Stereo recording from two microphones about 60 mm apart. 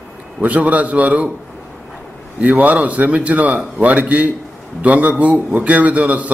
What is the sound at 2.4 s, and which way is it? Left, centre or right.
A man's voice, right.